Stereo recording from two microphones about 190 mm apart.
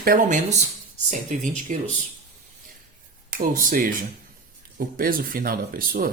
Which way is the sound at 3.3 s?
45° right (ahead or behind).